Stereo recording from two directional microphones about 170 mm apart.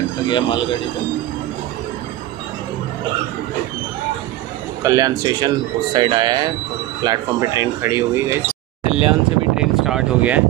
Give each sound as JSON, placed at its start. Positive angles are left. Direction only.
{"t": 0.3, "sound": "speech", "side_deg": 25}
{"t": 4.8, "sound": "speech", "side_deg": -20}
{"t": 8.8, "sound": "a sound", "side_deg": -35}
{"t": 9.6, "sound": "speech", "side_deg": -5}